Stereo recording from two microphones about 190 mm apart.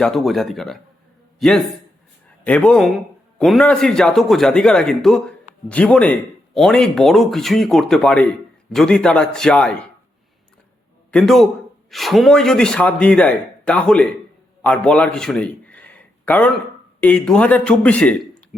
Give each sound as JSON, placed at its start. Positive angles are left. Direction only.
{"t": 0.0, "sound": "a man's voice", "side_deg": 0}
{"t": 11.1, "sound": "a man's voice", "side_deg": 0}